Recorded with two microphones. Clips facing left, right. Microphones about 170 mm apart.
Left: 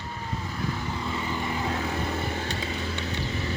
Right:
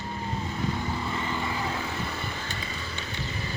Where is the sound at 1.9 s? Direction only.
40° left (ahead or behind).